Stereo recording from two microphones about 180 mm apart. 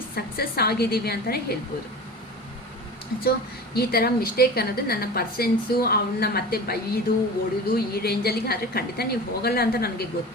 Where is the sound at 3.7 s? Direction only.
55° left (ahead or behind).